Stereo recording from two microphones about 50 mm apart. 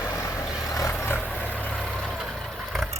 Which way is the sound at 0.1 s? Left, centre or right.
Left.